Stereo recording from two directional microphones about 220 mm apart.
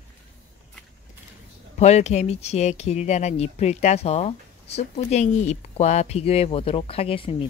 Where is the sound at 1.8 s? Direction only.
30° left (ahead or behind).